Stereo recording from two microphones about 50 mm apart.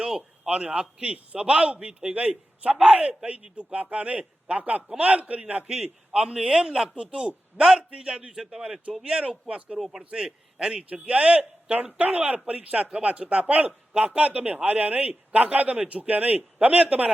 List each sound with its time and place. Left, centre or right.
0.4 s a man's voice: centre